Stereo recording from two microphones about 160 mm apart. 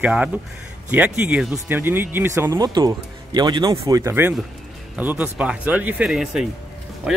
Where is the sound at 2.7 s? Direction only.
25° right (ahead or behind).